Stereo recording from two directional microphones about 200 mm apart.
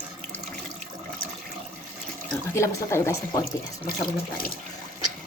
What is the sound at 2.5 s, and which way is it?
Speech, 15° left (ahead or behind).